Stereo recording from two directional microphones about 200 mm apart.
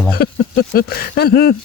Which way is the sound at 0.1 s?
50° left (ahead or behind).